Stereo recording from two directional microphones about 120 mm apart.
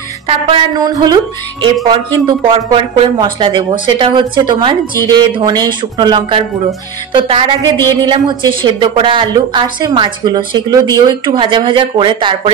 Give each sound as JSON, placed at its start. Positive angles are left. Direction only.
{"t": 0.3, "sound": "a woman's voice", "side_deg": -50}
{"t": 0.7, "sound": "a woman's voice", "side_deg": -35}
{"t": 11.3, "sound": "a woman's voice", "side_deg": -45}